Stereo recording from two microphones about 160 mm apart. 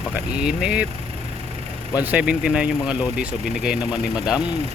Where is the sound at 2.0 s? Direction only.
10° right (ahead or behind).